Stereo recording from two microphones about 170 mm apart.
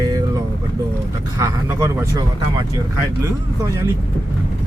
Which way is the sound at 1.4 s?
15° right (ahead or behind).